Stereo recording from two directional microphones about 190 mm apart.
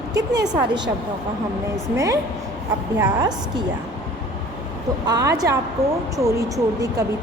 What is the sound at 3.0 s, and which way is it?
Speech, 20° right (ahead or behind).